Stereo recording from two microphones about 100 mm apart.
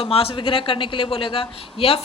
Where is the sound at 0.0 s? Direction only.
70° left (ahead or behind).